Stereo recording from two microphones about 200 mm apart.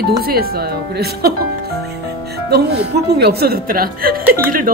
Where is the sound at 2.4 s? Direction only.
55° right (ahead or behind).